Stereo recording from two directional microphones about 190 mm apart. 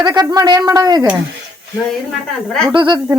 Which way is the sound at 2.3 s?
5° left (ahead or behind).